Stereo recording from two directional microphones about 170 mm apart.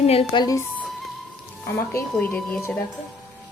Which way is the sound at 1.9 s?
10° left (ahead or behind).